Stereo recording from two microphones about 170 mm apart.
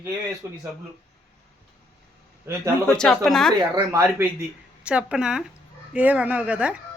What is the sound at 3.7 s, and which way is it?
Speech, 15° right (ahead or behind).